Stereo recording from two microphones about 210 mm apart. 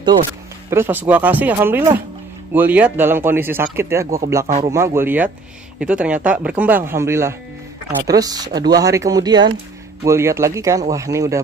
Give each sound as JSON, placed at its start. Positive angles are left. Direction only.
{"t": 0.7, "sound": "speech", "side_deg": -10}